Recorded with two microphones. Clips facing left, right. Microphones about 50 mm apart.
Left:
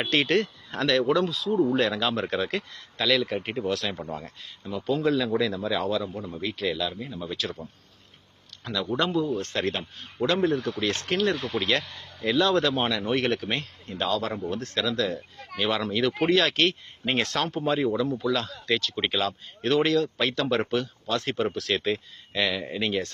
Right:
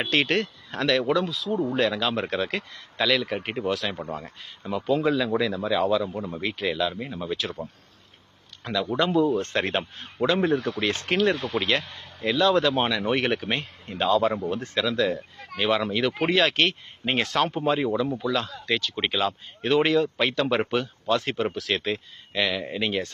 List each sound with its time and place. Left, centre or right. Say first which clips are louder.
0.0 s speech: even; centre; by 7.7 s right
8.7 s speech: right 2 dB; centre
9.1 s speech: right 4 dB; right
11.1 s speech: right 3 dB; centre
11.8 s a man's voice: right 1 dB; right
12.3 s speech: right 2 dB; centre